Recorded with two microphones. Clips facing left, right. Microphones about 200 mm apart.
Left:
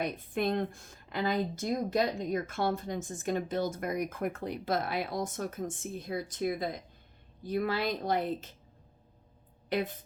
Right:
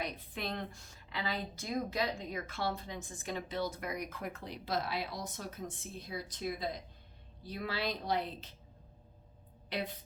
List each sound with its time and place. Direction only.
0.0 s a woman's voice: 50° left (ahead or behind)
9.6 s speech: 45° left (ahead or behind)